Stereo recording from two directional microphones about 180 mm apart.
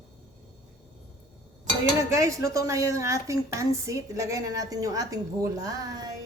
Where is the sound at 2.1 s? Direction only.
20° right (ahead or behind).